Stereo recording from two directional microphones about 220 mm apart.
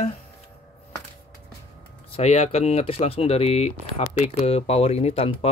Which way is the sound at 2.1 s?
30° left (ahead or behind).